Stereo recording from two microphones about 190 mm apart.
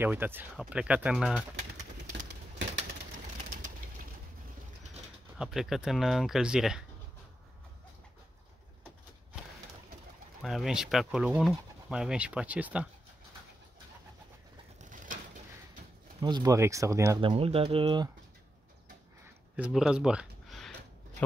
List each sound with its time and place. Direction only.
0.0 s speech: 10° right (ahead or behind)
5.4 s speech: centre (ahead or behind)
10.4 s speech: centre (ahead or behind)
14.8 s mechanisms: 45° right (ahead or behind)
16.2 s speech: 20° right (ahead or behind)
17.2 s speech: 30° right (ahead or behind)
19.5 s a sound: 5° right (ahead or behind)